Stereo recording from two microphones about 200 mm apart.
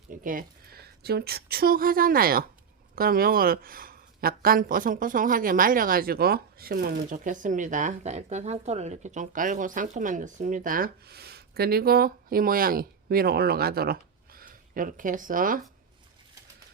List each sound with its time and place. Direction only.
0.1 s speech: 45° right (ahead or behind)